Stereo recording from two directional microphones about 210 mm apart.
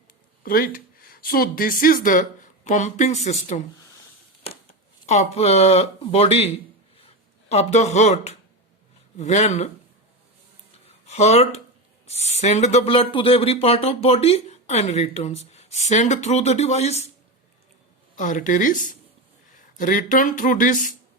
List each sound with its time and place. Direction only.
0.4 s speech: 45° left (ahead or behind)
5.0 s speech: 35° left (ahead or behind)
11.0 s speech: 30° left (ahead or behind)
18.2 s speech: 40° left (ahead or behind)